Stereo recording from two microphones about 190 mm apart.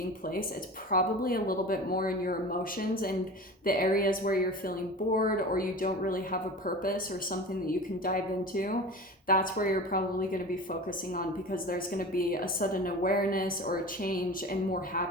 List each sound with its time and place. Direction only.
0.9 s speech: 50° left (ahead or behind)